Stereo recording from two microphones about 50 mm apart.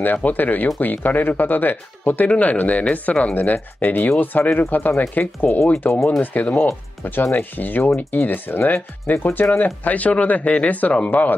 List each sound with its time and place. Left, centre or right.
0.0 s speech: left
3.5 s speech: left